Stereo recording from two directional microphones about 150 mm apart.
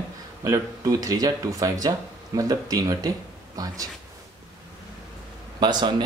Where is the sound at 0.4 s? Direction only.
20° right (ahead or behind).